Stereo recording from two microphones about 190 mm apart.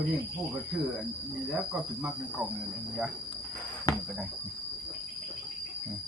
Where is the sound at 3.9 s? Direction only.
20° left (ahead or behind).